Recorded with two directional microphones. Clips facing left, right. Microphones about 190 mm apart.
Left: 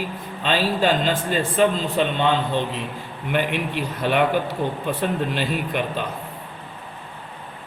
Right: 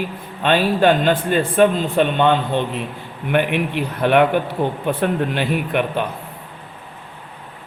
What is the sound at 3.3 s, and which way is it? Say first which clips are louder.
A man's voice: right 5 dB; 60° right (ahead or behind).